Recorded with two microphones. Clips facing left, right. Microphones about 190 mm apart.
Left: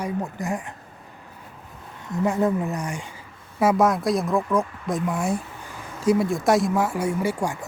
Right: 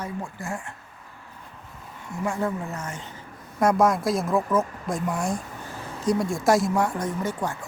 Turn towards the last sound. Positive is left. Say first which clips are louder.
# left 4 dB
turn(degrees=10)  # may be behind; listen again after turning